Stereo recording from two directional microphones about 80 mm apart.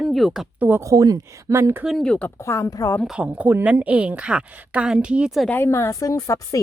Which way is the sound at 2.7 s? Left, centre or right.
Left.